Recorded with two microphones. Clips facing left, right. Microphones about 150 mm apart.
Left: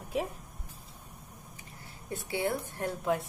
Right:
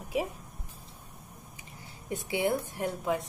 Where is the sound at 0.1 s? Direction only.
5° right (ahead or behind).